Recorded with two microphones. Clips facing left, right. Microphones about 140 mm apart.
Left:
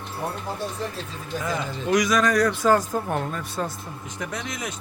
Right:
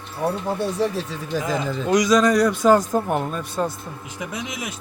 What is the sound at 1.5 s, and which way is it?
Speech, 20° right (ahead or behind).